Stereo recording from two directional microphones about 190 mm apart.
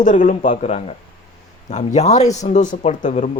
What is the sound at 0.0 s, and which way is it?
Speech, 40° left (ahead or behind).